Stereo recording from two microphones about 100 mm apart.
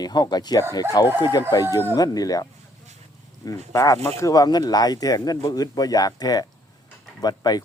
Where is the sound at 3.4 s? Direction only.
30° left (ahead or behind).